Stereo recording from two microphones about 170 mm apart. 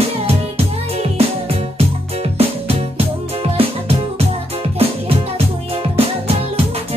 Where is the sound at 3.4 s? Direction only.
35° right (ahead or behind).